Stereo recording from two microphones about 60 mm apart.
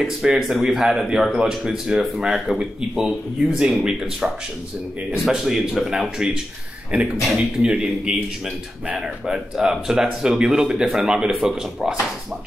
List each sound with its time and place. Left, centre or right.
0.0 s speech: centre
5.3 s speech: centre
6.9 s speech: right
7.3 s speech: centre